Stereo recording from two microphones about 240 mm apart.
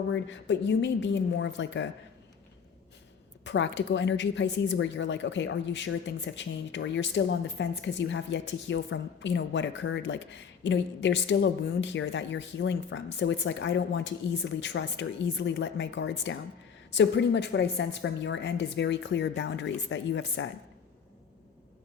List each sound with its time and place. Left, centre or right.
0.1 s a woman's voice: left
3.4 s a woman's voice: left